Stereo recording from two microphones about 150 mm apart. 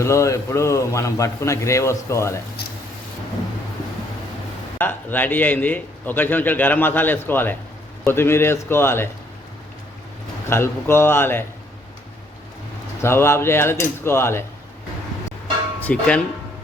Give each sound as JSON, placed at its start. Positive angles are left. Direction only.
{"t": 0.0, "sound": "a man's voice", "side_deg": 20}
{"t": 4.8, "sound": "a man's voice", "side_deg": 15}
{"t": 10.5, "sound": "a man's voice", "side_deg": 15}
{"t": 13.0, "sound": "a man's voice", "side_deg": 15}
{"t": 15.8, "sound": "speech", "side_deg": 10}